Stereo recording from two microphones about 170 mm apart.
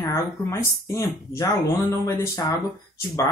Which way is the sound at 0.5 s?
20° left (ahead or behind).